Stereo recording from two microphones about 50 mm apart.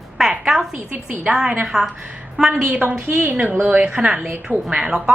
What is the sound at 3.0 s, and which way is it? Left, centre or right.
Music, right.